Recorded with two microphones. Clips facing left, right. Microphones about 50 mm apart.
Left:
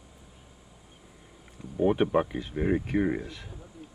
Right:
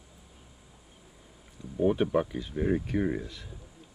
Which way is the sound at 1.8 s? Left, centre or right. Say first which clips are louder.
Left 2 dB; left.